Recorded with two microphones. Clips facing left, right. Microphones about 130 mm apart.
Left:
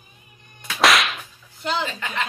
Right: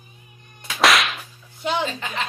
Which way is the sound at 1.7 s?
15° right (ahead or behind).